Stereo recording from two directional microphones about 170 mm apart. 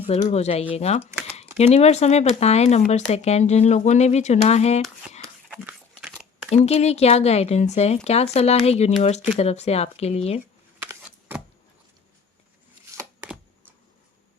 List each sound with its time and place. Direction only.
0.1 s speech: 40° left (ahead or behind)
5.6 s crumpling: 5° right (ahead or behind)
6.5 s speech: 40° left (ahead or behind)
10.8 s a sound: 10° right (ahead or behind)